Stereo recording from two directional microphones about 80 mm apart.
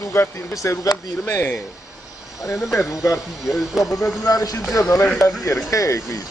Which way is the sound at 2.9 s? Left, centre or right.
Left.